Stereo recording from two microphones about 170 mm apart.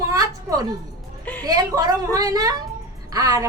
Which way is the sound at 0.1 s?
20° right (ahead or behind).